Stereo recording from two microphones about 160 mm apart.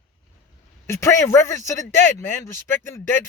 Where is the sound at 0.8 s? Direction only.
15° left (ahead or behind).